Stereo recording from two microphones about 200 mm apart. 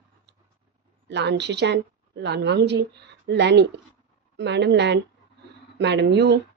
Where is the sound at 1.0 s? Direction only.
60° right (ahead or behind).